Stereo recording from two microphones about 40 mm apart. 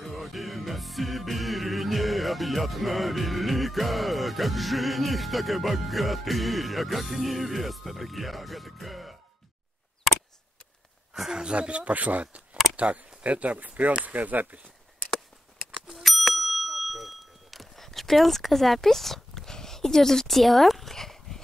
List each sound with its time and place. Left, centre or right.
0.0 s music: centre
11.5 s speech: right
15.9 s bicycle bell: centre